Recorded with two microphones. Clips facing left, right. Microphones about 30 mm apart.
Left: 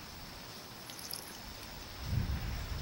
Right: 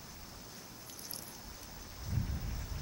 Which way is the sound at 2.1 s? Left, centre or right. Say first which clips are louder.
Left 1 dB; left.